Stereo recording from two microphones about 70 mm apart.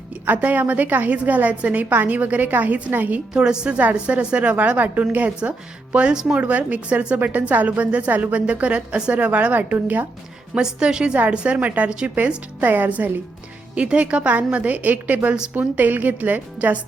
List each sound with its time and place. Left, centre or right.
0.3 s a woman's voice: right
3.3 s a woman's voice: centre
10.5 s a woman's voice: centre